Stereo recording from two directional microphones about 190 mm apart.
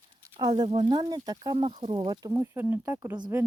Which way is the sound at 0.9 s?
20° right (ahead or behind).